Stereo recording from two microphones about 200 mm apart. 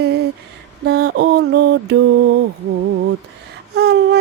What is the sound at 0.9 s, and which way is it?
Mantra, 55° right (ahead or behind).